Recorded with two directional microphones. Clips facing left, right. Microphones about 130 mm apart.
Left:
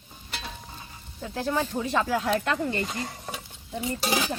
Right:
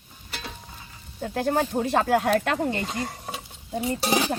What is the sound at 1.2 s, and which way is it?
Speech, 55° right (ahead or behind).